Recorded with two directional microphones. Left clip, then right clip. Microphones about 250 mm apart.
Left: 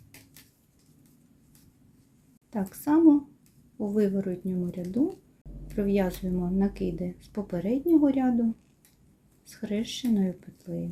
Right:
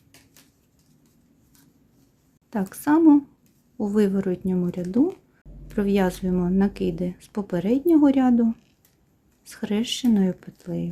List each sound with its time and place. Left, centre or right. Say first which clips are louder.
2.5 s speech: right 5 dB; right
9.5 s speech: right 6 dB; right